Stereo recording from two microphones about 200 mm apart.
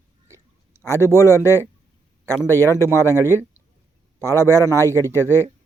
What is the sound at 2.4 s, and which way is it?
Speech, 10° left (ahead or behind).